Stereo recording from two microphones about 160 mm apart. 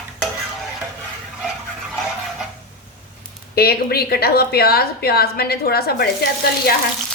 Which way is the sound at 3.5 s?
75° left (ahead or behind).